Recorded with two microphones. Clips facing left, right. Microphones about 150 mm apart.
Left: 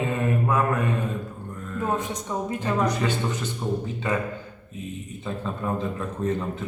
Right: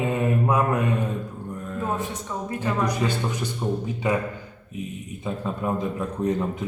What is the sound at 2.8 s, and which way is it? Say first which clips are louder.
A man's voice: even; 10° right (ahead or behind).